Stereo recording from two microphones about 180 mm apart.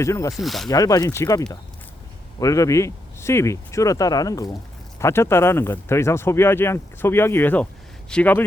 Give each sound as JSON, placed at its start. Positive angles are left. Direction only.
{"t": 0.0, "sound": "speech", "side_deg": 15}
{"t": 0.3, "sound": "speech", "side_deg": 0}
{"t": 0.7, "sound": "speech", "side_deg": 20}